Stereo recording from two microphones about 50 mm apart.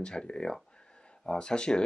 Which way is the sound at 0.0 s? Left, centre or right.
Centre.